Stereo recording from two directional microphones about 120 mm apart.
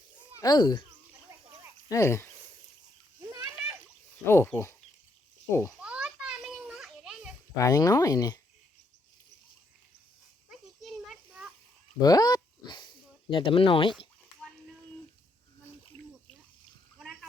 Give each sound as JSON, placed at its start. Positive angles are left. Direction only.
{"t": 0.3, "sound": "speech", "side_deg": 35}
{"t": 1.9, "sound": "speech", "side_deg": 25}
{"t": 4.3, "sound": "speech", "side_deg": 20}
{"t": 5.8, "sound": "children playing", "side_deg": -10}
{"t": 7.5, "sound": "speech", "side_deg": 30}
{"t": 10.5, "sound": "children playing", "side_deg": 0}
{"t": 11.9, "sound": "dog", "side_deg": 30}
{"t": 17.0, "sound": "a sound", "side_deg": 5}